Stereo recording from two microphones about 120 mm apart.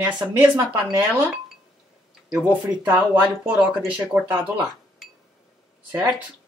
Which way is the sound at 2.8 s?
10° right (ahead or behind).